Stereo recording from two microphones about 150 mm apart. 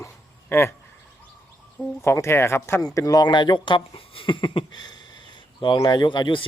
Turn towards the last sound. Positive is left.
turn(degrees=30)  # may be behind; listen again after turning